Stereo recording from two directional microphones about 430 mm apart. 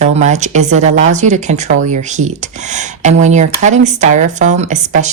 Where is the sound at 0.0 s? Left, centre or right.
Centre.